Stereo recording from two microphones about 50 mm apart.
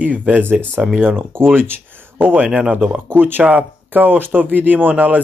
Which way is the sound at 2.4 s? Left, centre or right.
Centre.